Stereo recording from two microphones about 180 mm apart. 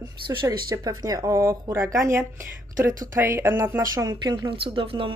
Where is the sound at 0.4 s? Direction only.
20° right (ahead or behind).